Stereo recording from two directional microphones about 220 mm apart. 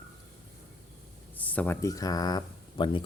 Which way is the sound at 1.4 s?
5° left (ahead or behind).